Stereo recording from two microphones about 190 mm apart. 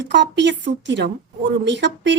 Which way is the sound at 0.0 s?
70° right (ahead or behind).